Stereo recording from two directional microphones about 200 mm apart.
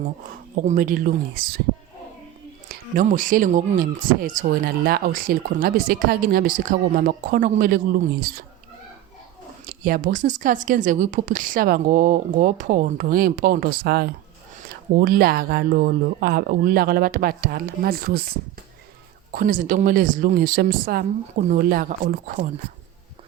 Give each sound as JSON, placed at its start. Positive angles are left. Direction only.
{"t": 0.6, "sound": "speech", "side_deg": -40}
{"t": 2.9, "sound": "speech", "side_deg": -40}
{"t": 9.6, "sound": "speech", "side_deg": -45}
{"t": 19.3, "sound": "speech", "side_deg": -45}